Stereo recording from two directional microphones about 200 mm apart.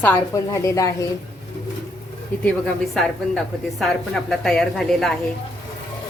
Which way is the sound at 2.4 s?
5° left (ahead or behind).